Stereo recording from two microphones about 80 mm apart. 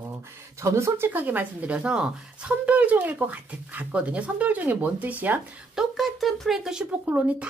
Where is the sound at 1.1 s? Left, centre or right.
Right.